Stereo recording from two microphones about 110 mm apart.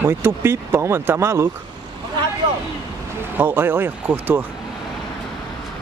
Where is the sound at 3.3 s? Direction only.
20° right (ahead or behind).